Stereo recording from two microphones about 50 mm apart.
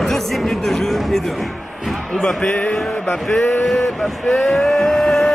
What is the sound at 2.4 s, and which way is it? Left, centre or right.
Music, left.